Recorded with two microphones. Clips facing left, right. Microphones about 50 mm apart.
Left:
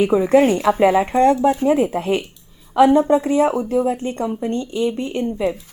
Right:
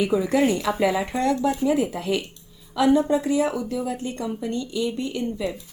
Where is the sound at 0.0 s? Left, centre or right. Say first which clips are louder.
Left 6 dB; left.